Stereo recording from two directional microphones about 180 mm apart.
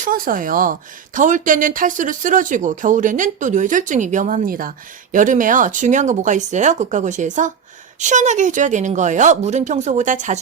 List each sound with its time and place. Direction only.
0.0 s a woman's voice: 50° right (ahead or behind)